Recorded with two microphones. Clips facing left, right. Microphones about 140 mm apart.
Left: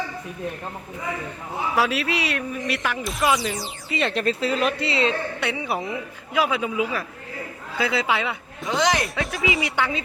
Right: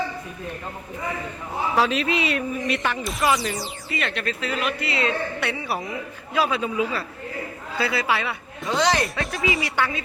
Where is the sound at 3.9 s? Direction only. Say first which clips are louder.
Left 5 dB; 30° left (ahead or behind); by 9.0 s 15° left (ahead or behind).